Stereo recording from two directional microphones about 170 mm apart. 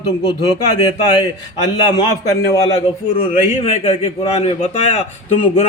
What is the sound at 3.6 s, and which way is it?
A man's voice, 35° left (ahead or behind).